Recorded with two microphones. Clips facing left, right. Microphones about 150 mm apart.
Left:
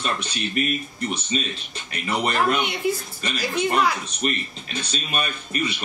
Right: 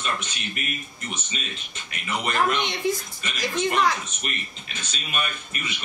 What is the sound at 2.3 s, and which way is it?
A woman's voice, 10° left (ahead or behind).